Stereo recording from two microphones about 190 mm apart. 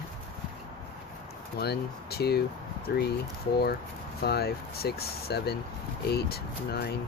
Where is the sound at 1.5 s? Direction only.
60° left (ahead or behind).